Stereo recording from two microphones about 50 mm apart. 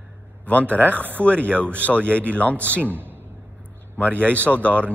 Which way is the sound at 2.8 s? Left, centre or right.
Right.